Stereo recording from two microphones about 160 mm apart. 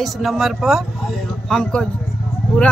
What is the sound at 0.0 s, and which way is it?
Speech, centre (ahead or behind).